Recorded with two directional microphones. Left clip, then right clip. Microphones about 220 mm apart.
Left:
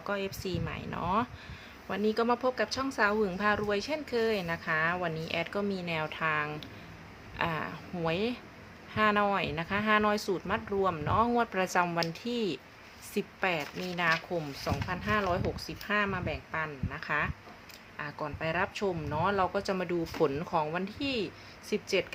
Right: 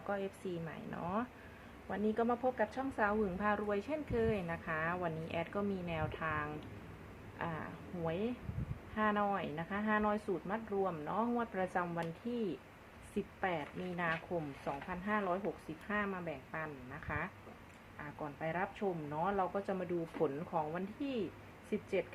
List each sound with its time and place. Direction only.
0.1 s a woman's voice: 25° left (ahead or behind)